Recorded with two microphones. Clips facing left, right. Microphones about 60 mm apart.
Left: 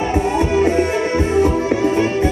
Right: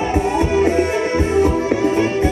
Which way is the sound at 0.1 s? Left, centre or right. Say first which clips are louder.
Even; centre.